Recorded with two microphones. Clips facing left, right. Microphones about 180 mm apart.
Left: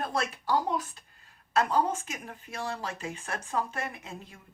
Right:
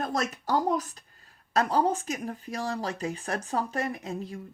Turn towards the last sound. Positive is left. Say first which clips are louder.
# right 8 dB
turn(degrees=-40)  # may be behind; listen again after turning